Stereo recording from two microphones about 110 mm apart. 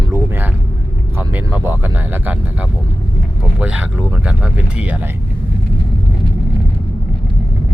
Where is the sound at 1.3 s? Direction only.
15° right (ahead or behind).